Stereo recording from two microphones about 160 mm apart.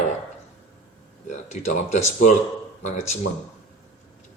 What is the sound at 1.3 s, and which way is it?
Speech, 45° left (ahead or behind).